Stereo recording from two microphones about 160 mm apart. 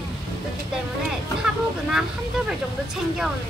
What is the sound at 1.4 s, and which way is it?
Speech, 5° right (ahead or behind).